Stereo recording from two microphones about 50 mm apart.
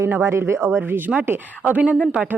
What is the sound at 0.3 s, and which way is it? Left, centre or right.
Speech, right.